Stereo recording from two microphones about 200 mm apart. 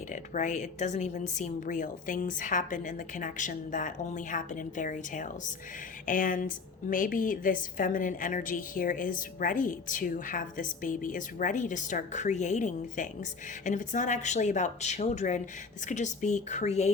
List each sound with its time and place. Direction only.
0.1 s a woman's voice: 40° left (ahead or behind)